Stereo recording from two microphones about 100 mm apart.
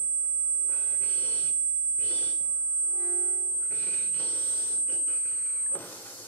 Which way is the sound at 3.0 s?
10° left (ahead or behind).